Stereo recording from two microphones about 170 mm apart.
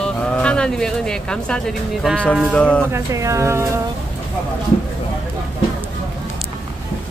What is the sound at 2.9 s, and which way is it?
Speech, 20° right (ahead or behind).